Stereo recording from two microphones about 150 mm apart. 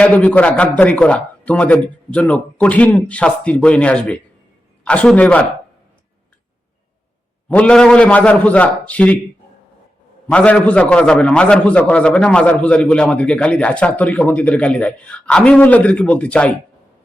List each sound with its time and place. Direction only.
0.0 s a man's voice: 10° left (ahead or behind)
7.4 s a man's voice: 10° left (ahead or behind)
10.2 s a man's voice: 10° left (ahead or behind)